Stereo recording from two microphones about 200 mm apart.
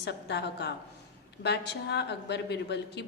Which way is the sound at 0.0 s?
60° left (ahead or behind).